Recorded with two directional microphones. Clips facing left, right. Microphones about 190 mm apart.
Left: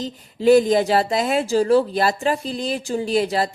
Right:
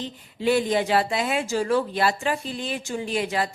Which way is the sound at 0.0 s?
40° left (ahead or behind).